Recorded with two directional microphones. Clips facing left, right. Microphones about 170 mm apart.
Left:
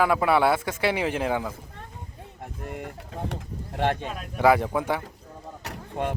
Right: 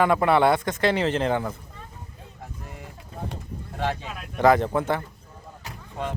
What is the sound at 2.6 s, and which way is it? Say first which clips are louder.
Vehicle: left 6 dB; 60° left (ahead or behind).